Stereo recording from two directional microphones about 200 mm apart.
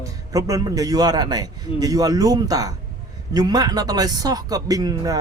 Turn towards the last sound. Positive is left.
turn(degrees=-20)  # may be behind; listen again after turning